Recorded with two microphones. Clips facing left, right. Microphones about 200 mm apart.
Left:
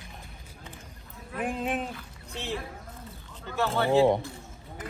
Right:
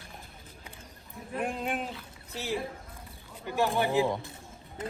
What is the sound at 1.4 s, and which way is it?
Speech, centre (ahead or behind).